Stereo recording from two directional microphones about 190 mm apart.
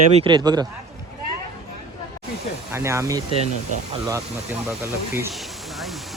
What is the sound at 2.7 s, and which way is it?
Speech, 15° right (ahead or behind).